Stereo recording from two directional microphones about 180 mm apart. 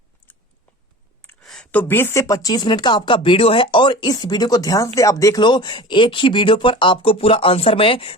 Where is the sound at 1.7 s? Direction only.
10° left (ahead or behind).